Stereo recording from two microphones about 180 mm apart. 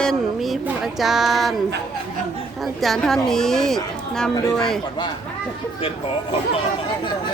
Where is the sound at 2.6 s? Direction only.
Centre (ahead or behind).